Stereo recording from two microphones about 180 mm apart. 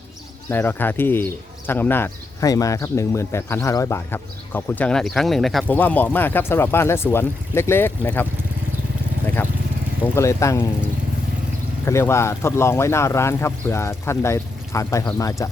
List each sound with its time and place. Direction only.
0.5 s speech: 10° left (ahead or behind)
9.2 s vehicle: 10° left (ahead or behind)
10.0 s speech: 15° left (ahead or behind)
11.9 s speech: 15° left (ahead or behind)